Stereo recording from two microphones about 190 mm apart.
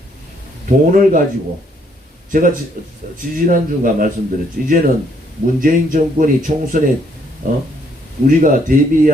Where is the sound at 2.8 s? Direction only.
45° right (ahead or behind).